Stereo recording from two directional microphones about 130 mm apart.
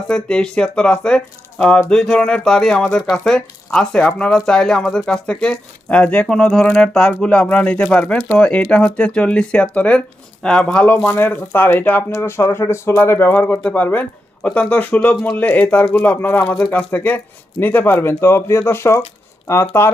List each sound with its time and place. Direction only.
0.1 s speech: 5° left (ahead or behind)